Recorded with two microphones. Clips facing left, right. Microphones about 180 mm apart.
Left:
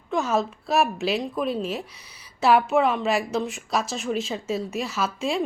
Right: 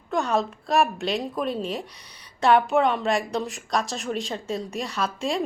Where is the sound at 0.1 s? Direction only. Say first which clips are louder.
Even; centre (ahead or behind).